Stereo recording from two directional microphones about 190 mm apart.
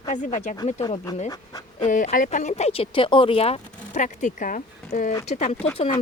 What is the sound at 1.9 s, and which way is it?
Speech, 45° left (ahead or behind).